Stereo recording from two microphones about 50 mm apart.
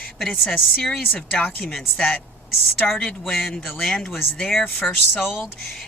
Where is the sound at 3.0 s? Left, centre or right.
Centre.